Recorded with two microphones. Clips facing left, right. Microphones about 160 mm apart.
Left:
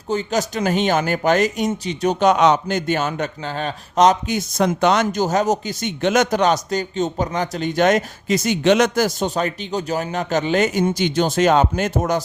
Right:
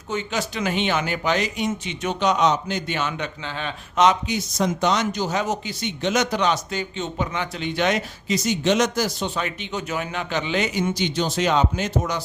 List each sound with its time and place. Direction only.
0.1 s speech: 40° left (ahead or behind)
2.3 s a man's voice: 60° left (ahead or behind)